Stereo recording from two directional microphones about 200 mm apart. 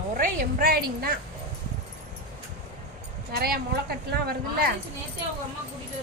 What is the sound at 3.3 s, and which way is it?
A woman's voice, 50° right (ahead or behind).